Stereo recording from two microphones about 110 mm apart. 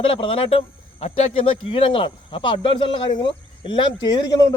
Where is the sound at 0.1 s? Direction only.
60° left (ahead or behind).